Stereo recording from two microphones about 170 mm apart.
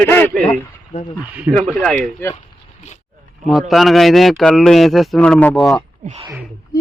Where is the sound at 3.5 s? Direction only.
Centre (ahead or behind).